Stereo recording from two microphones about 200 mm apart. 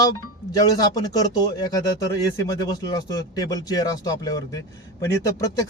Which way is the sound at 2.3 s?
15° left (ahead or behind).